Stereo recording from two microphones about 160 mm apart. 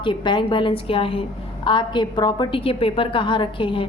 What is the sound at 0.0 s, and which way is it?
A woman's voice, 30° left (ahead or behind).